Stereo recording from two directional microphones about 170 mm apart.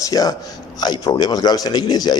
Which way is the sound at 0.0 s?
20° left (ahead or behind).